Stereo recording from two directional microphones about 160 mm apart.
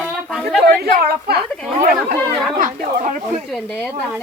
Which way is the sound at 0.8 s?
70° right (ahead or behind).